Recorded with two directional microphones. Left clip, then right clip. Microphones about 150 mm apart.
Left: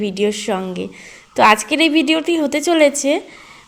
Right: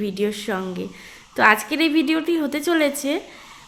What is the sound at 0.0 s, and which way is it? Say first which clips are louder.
A woman's voice: left 5 dB; 20° left (ahead or behind).